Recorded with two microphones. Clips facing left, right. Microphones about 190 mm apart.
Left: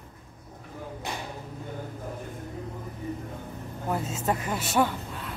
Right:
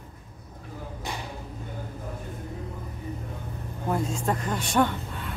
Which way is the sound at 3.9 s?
5° left (ahead or behind).